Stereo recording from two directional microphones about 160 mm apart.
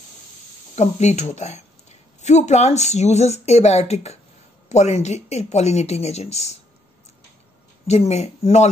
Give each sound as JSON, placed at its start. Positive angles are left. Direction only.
{"t": 0.7, "sound": "speech", "side_deg": 45}
{"t": 7.8, "sound": "speech", "side_deg": 45}